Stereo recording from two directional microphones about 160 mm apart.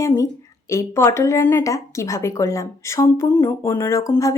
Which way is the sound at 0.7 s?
20° left (ahead or behind).